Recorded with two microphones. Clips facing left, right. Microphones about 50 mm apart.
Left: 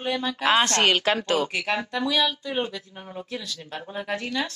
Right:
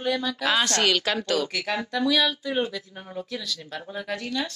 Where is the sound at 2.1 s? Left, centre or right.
Centre.